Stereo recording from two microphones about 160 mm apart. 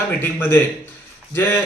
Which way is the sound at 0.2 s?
15° left (ahead or behind).